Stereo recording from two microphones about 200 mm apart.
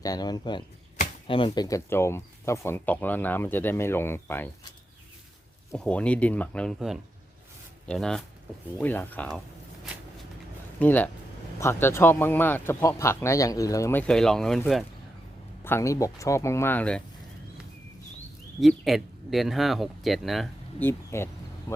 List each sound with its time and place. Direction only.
0.0 s speech: 20° left (ahead or behind)
5.7 s speech: 5° left (ahead or behind)
10.8 s speech: 10° left (ahead or behind)
14.1 s speech: 5° left (ahead or behind)
15.6 s speech: 15° left (ahead or behind)
18.6 s speech: centre (ahead or behind)